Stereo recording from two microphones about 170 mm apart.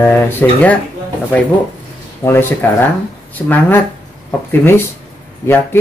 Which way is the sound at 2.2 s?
20° left (ahead or behind).